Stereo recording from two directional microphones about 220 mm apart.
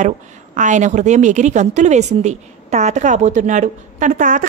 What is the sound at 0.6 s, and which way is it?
A woman's voice, 35° right (ahead or behind).